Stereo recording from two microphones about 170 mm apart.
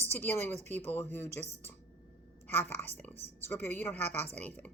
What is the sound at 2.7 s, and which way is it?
A woman's voice, 10° left (ahead or behind).